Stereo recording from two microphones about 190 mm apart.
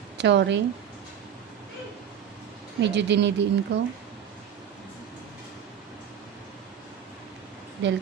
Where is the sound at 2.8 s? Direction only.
65° right (ahead or behind).